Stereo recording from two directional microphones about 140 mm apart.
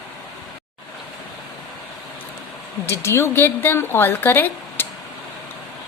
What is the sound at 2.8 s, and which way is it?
A woman's voice, 20° left (ahead or behind).